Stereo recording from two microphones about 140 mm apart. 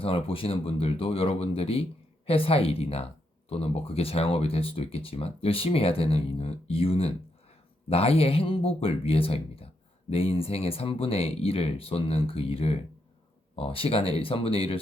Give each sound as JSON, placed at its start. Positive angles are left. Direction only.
{"t": 0.0, "sound": "speech", "side_deg": 40}